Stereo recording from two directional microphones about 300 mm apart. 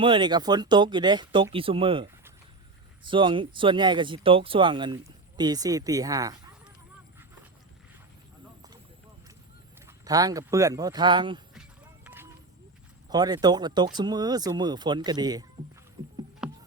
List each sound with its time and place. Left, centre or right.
0.0 s speech: centre
9.8 s speech: centre
12.0 s a sound: centre
13.1 s speech: centre
16.0 s heart sounds: centre
16.4 s music: centre